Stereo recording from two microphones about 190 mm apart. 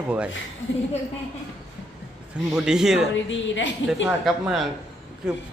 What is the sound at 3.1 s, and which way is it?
Speech, 75° left (ahead or behind).